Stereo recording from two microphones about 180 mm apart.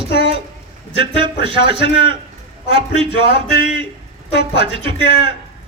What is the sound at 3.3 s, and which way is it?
Speech, 70° left (ahead or behind).